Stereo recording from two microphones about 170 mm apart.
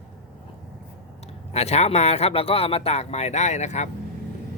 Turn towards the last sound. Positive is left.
turn(degrees=40)  # may be behind; listen again after turning